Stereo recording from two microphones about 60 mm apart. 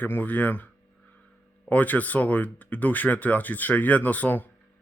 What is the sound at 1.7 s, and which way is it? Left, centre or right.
Speech, left.